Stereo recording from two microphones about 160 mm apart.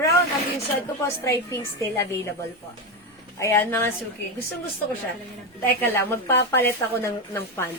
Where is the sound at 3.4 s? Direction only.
15° left (ahead or behind).